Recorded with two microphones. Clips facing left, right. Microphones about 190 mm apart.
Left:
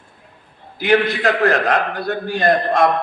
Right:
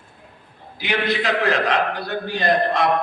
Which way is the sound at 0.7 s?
50° left (ahead or behind).